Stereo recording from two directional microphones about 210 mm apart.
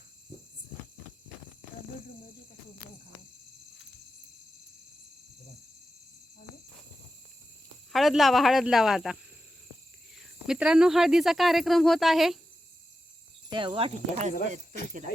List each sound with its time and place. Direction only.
7.9 s speech: centre (ahead or behind)
10.2 s speech: 5° right (ahead or behind)
13.5 s speech: 25° right (ahead or behind)